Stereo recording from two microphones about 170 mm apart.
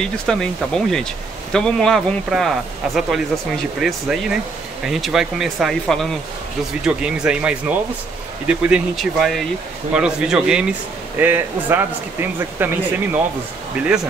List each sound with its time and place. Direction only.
0.0 s speech: 5° left (ahead or behind)